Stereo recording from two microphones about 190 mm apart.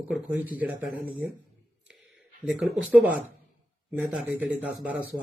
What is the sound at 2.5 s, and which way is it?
Speech, 5° right (ahead or behind).